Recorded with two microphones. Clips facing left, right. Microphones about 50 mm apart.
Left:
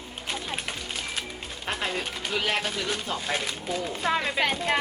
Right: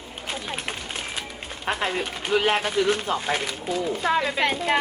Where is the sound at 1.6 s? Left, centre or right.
Right.